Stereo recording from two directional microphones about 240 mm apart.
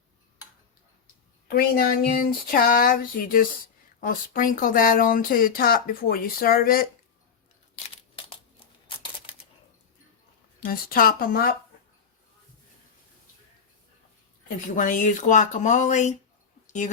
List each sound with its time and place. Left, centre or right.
1.0 s speech: left
8.3 s crumpling: left
10.7 s speech: left
14.8 s speech: left